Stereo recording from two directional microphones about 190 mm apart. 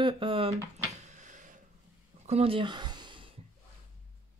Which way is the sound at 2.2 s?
35° right (ahead or behind).